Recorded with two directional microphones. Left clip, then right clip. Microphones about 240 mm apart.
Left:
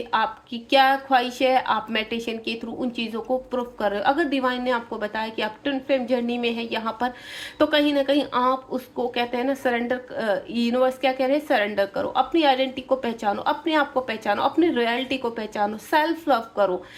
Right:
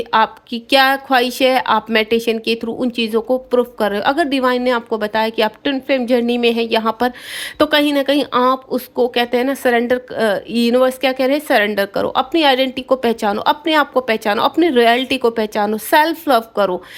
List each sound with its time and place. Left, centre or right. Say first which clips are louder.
0.1 s a woman's voice: right 8 dB; right